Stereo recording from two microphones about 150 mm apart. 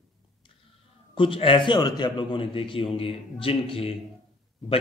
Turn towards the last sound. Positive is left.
turn(degrees=40)  # may be behind; listen again after turning